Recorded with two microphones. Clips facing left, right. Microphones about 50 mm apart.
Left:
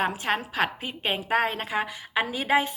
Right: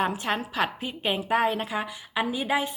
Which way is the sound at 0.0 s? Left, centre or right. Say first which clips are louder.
Even; left.